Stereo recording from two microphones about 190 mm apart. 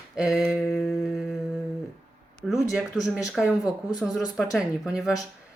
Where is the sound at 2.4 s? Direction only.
Centre (ahead or behind).